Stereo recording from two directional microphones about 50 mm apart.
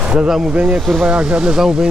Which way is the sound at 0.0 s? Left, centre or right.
Right.